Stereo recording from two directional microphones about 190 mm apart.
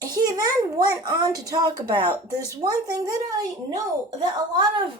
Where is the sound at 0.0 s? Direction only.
20° right (ahead or behind).